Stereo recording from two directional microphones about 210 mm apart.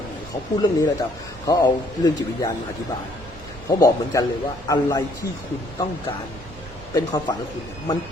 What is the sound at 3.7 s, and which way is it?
A man's voice, 15° left (ahead or behind).